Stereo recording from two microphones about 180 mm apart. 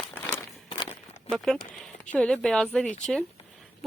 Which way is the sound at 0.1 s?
15° left (ahead or behind).